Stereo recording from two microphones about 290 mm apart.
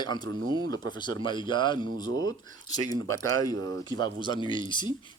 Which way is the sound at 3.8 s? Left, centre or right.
Centre.